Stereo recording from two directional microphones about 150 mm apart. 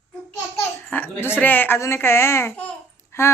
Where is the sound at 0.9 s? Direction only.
15° left (ahead or behind).